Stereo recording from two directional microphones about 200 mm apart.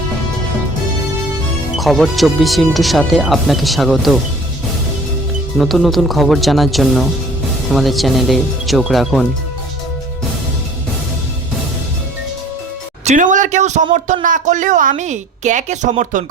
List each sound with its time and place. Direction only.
1.8 s speech: centre (ahead or behind)
5.5 s speech: centre (ahead or behind)
13.1 s a woman's voice: 40° right (ahead or behind)